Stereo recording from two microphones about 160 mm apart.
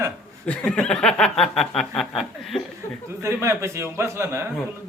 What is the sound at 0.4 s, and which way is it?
Speech, 5° left (ahead or behind).